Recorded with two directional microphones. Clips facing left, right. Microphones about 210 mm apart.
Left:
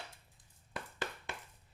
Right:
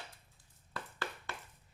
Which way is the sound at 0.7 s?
15° left (ahead or behind).